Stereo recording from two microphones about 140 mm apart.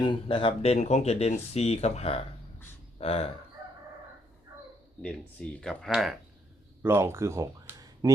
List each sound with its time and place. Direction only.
0.0 s speech: 35° left (ahead or behind)
5.0 s speech: 5° left (ahead or behind)
6.8 s speech: 20° right (ahead or behind)